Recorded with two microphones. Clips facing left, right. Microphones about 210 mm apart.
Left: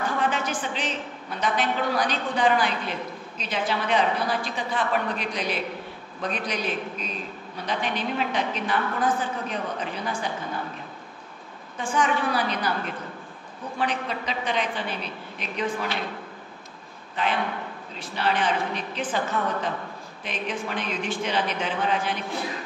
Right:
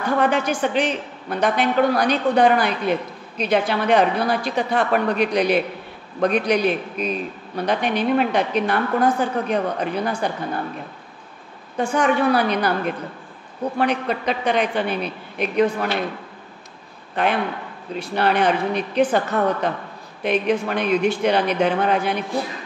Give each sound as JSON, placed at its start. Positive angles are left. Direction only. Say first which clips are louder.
{"t": 0.2, "sound": "a woman's voice", "louder": "right 7 dB", "side_deg": -65}
{"t": 11.7, "sound": "a woman's voice", "louder": "right 6 dB", "side_deg": -60}
{"t": 17.1, "sound": "a man's voice", "louder": "right 5 dB", "side_deg": -65}